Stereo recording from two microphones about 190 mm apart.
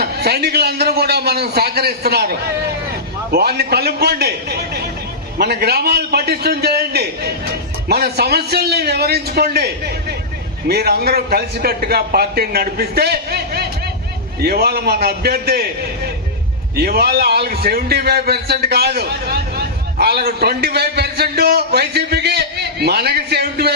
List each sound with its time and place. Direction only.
0.0 s a man's voice: 55° right (ahead or behind)
16.7 s a man's voice: 55° right (ahead or behind)